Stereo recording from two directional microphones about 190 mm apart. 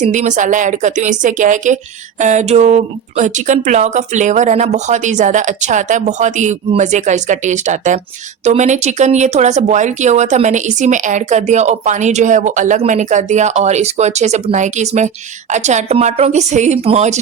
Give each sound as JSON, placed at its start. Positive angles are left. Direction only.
{"t": 0.0, "sound": "speech", "side_deg": -40}